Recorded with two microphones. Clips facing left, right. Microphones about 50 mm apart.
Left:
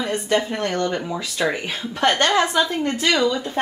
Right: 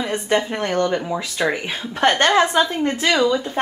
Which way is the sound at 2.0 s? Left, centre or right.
Right.